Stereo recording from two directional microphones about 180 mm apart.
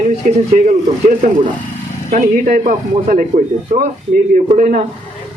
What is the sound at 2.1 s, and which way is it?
A man's voice, 45° right (ahead or behind).